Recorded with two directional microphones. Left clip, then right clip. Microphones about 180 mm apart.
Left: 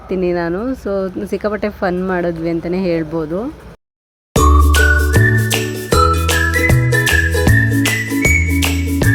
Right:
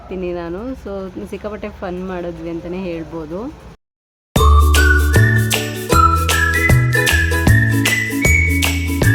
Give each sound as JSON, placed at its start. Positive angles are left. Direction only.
{"t": 0.1, "sound": "speech", "side_deg": 30}
{"t": 4.4, "sound": "music", "side_deg": 0}